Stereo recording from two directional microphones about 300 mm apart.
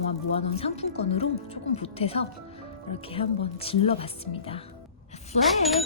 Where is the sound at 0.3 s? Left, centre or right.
Centre.